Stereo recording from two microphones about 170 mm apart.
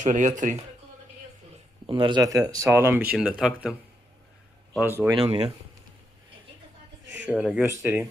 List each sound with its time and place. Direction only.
0.0 s speech: 45° right (ahead or behind)
1.9 s speech: 30° right (ahead or behind); by 3.8 s 5° right (ahead or behind)
4.8 s speech: 10° right (ahead or behind)
5.2 s speech: 35° right (ahead or behind)
7.3 s speech: 5° right (ahead or behind)